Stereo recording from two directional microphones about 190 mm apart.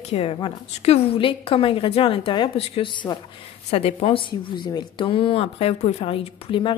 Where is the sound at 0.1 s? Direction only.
30° left (ahead or behind).